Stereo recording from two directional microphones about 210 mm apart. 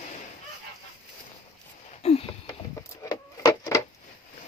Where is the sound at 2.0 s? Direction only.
30° left (ahead or behind).